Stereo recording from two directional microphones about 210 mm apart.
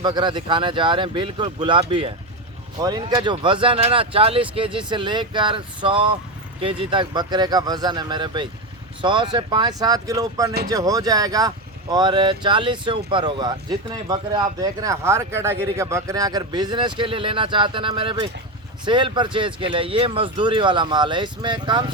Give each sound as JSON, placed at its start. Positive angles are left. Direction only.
{"t": 0.0, "sound": "speech", "side_deg": -20}